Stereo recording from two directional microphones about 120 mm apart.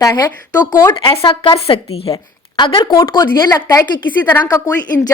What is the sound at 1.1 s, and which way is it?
A woman's voice, 50° left (ahead or behind).